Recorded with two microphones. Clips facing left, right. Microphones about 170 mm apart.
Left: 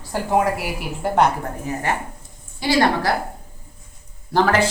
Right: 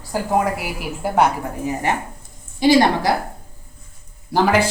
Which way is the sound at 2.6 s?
20° right (ahead or behind).